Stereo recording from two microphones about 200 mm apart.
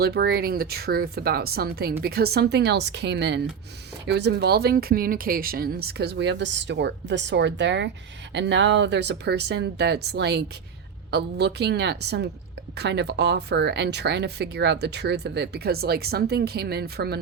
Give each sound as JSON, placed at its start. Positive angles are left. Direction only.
{"t": 0.0, "sound": "speech", "side_deg": -50}